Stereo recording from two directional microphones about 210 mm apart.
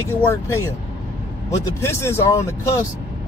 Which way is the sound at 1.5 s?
15° left (ahead or behind).